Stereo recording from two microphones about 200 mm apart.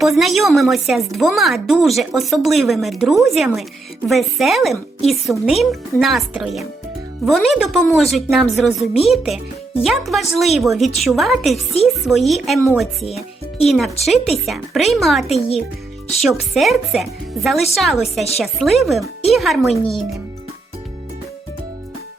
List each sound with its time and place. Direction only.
0.0 s speech: centre (ahead or behind)
15.3 s a child's voice: 30° left (ahead or behind)
16.2 s speech: centre (ahead or behind)